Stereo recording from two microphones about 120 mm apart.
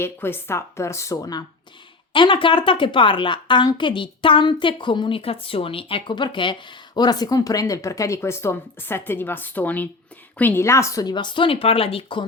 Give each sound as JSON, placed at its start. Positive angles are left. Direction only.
{"t": 0.0, "sound": "speech", "side_deg": 20}
{"t": 2.1, "sound": "a woman's voice", "side_deg": 45}